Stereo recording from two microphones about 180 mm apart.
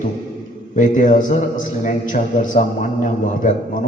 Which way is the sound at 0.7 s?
45° left (ahead or behind).